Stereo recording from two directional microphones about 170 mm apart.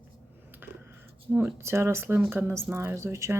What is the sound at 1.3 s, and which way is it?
Speech, 15° right (ahead or behind).